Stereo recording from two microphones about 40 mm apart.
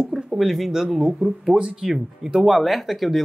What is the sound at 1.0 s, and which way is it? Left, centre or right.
Speech, centre.